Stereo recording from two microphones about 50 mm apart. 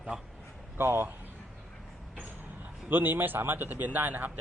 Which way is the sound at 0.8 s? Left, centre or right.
Right.